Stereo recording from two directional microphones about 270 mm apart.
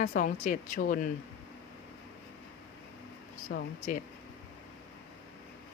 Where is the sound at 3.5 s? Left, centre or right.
Left.